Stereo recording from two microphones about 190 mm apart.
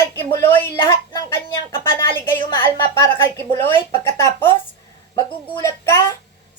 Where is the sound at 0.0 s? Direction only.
15° left (ahead or behind).